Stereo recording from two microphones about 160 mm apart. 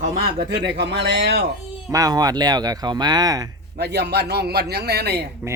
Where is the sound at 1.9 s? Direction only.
20° right (ahead or behind).